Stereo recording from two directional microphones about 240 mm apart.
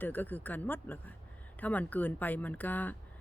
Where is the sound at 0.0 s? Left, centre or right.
Centre.